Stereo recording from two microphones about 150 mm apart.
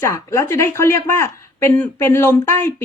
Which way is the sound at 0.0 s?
20° left (ahead or behind).